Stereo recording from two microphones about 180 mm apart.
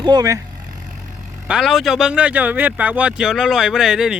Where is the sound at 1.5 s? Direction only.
Centre (ahead or behind).